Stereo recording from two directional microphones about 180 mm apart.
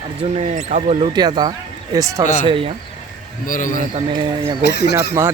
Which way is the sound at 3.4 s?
50° left (ahead or behind).